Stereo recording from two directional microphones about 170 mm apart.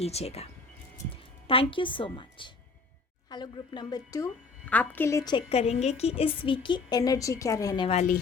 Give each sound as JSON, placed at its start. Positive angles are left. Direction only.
{"t": 0.0, "sound": "a woman's voice", "side_deg": 35}
{"t": 1.5, "sound": "a woman's voice", "side_deg": 30}
{"t": 4.7, "sound": "a woman's voice", "side_deg": 10}
{"t": 5.5, "sound": "a woman's voice", "side_deg": 40}
{"t": 7.9, "sound": "a woman's voice", "side_deg": 40}